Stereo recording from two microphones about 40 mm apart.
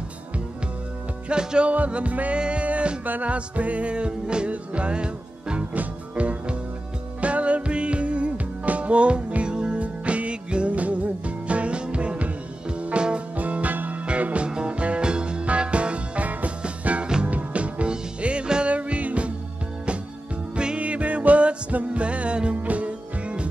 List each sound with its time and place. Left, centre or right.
1.3 s music: right
1.9 s music: right
13.4 s music: right
20.5 s music: right